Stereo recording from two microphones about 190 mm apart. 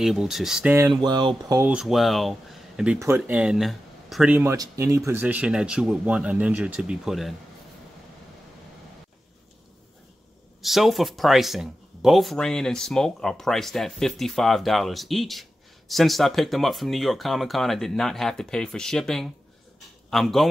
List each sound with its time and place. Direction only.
0.0 s speech: centre (ahead or behind)
0.8 s speech: 20° right (ahead or behind)
1.6 s speech: 5° right (ahead or behind)
10.6 s speech: centre (ahead or behind)